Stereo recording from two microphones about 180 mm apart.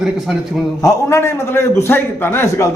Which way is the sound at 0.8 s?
15° left (ahead or behind).